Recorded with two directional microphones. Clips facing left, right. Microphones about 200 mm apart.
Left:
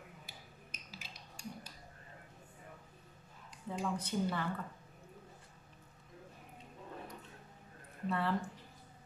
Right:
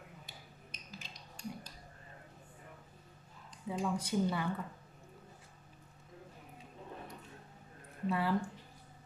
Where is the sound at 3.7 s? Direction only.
10° right (ahead or behind).